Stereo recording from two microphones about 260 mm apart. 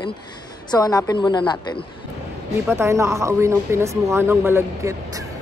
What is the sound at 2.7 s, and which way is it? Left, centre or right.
A man's voice, centre.